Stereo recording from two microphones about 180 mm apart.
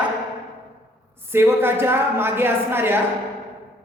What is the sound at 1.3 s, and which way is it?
A woman's voice, 10° right (ahead or behind).